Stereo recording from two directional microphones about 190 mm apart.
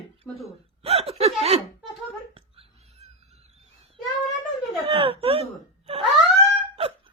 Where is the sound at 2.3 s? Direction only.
30° right (ahead or behind).